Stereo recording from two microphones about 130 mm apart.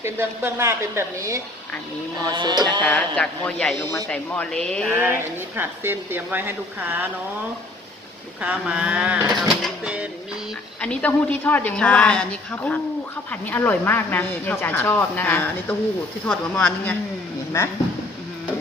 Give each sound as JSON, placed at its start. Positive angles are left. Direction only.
{"t": 0.0, "sound": "a woman's voice", "side_deg": -20}
{"t": 2.3, "sound": "music", "side_deg": -35}
{"t": 2.8, "sound": "speech", "side_deg": 10}
{"t": 4.9, "sound": "speech", "side_deg": -15}
{"t": 8.4, "sound": "speech", "side_deg": -10}
{"t": 9.3, "sound": "speech", "side_deg": 0}
{"t": 10.8, "sound": "speech", "side_deg": 10}
{"t": 16.2, "sound": "speech", "side_deg": 5}